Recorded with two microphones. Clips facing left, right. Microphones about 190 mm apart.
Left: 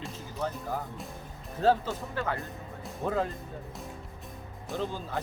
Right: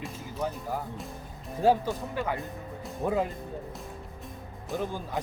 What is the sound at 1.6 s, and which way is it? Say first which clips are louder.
Speech: right 1 dB; 15° right (ahead or behind).